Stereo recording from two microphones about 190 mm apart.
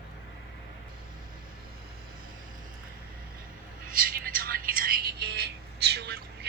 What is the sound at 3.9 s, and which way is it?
Telephone, 50° right (ahead or behind).